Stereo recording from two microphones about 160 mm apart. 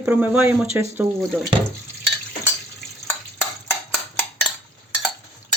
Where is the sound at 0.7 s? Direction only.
15° right (ahead or behind).